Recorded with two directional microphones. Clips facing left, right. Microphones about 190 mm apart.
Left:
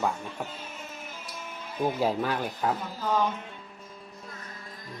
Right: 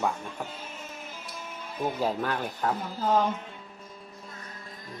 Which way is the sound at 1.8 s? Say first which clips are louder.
Left 2 dB; 10° left (ahead or behind).